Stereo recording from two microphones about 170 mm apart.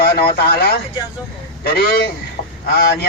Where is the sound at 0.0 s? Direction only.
70° left (ahead or behind).